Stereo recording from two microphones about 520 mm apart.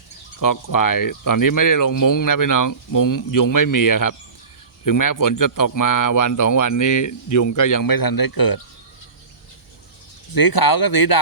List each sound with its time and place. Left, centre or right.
0.3 s speech: left
10.3 s speech: left